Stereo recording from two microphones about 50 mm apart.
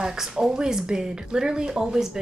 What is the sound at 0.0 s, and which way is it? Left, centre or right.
A woman's voice, centre.